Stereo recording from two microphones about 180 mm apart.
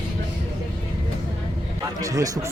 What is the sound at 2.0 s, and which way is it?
Speech, 20° right (ahead or behind).